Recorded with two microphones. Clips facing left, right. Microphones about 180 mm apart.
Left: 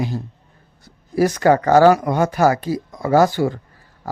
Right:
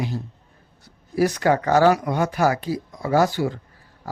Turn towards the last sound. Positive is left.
turn(degrees=50)  # may be behind; listen again after turning